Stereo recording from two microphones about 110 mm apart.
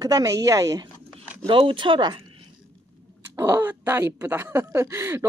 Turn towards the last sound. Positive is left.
turn(degrees=-25)  # may be behind; listen again after turning